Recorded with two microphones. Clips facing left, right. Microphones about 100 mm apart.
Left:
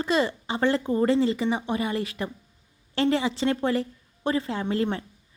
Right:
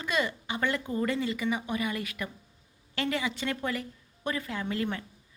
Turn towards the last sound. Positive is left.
turn(degrees=30)  # may be behind; listen again after turning